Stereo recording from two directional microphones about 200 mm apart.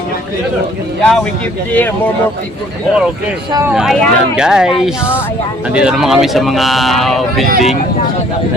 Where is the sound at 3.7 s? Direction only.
5° right (ahead or behind).